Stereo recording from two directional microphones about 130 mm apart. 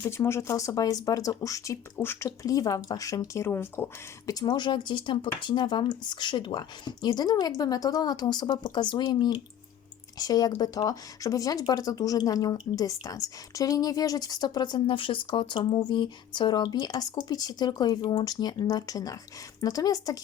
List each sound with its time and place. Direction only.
0.0 s speech: 20° left (ahead or behind)
4.4 s speech: 35° left (ahead or behind)